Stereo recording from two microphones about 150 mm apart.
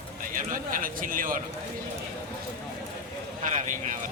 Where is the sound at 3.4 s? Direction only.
60° right (ahead or behind).